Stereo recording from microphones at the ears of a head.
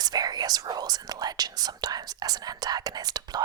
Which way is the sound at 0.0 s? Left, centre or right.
Right.